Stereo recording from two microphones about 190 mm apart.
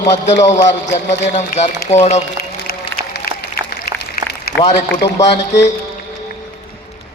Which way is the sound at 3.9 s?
50° left (ahead or behind).